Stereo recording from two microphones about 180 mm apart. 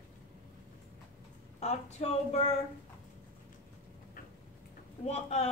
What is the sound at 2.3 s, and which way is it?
Speech, 40° left (ahead or behind).